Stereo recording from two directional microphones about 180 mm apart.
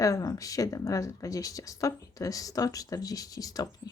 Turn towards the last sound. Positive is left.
turn(degrees=20)  # may be behind; listen again after turning